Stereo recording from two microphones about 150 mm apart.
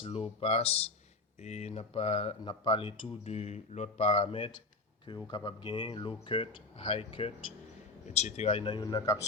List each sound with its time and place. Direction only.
0.0 s speech: 40° left (ahead or behind)